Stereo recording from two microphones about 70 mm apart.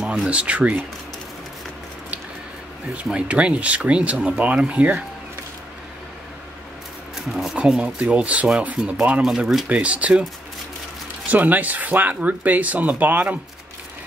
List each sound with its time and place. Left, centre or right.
0.0 s speech: centre
3.0 s speech: centre
7.2 s speech: centre
11.2 s speech: right